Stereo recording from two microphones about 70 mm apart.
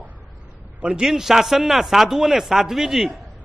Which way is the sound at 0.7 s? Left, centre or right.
Centre.